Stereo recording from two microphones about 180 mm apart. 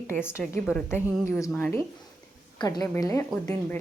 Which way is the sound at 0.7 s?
5° right (ahead or behind).